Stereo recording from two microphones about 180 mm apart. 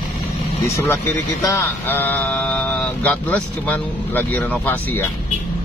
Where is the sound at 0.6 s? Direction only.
15° left (ahead or behind).